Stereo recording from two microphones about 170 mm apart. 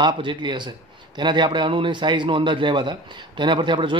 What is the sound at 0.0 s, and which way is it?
A man's voice, 25° right (ahead or behind).